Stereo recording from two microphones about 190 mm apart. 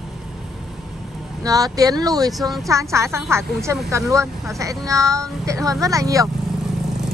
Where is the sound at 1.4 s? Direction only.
20° right (ahead or behind).